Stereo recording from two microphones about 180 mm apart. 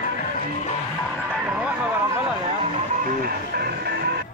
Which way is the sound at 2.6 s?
45° right (ahead or behind).